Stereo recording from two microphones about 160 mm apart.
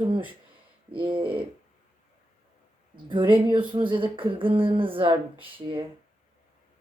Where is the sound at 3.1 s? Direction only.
30° right (ahead or behind).